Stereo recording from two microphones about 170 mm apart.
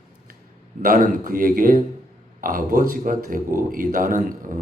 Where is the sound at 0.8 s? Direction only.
55° right (ahead or behind).